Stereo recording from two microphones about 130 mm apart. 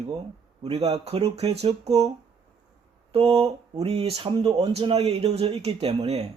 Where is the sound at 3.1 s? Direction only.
50° right (ahead or behind).